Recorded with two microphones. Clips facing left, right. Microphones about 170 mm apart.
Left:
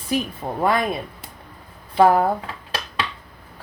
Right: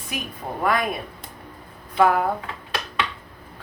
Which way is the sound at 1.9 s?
35° left (ahead or behind).